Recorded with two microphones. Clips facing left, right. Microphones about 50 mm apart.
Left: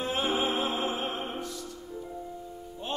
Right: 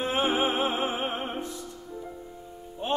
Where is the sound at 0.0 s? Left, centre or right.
Right.